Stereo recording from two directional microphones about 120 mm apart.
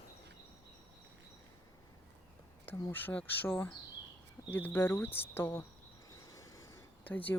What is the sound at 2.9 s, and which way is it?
Speech, 15° left (ahead or behind).